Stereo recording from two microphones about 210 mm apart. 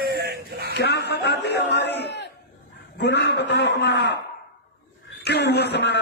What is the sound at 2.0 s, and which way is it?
Crowd, 55° left (ahead or behind).